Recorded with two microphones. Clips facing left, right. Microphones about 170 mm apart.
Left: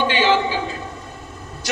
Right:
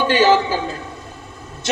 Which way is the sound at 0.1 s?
40° right (ahead or behind).